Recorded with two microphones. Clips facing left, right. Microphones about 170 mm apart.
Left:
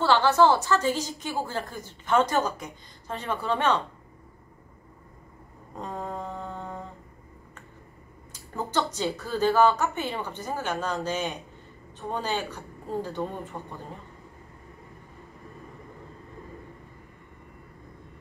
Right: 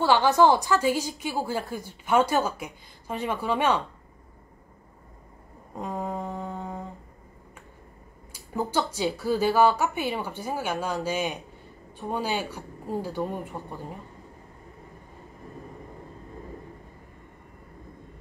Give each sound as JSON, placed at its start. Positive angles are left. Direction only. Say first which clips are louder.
{"t": 0.0, "sound": "a woman's voice", "louder": "right 1 dB", "side_deg": -15}
{"t": 5.8, "sound": "a sound", "louder": "right 3 dB", "side_deg": -15}
{"t": 8.3, "sound": "a woman's voice", "louder": "right 4 dB", "side_deg": -10}